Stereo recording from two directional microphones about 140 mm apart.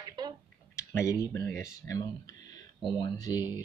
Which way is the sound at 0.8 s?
20° left (ahead or behind).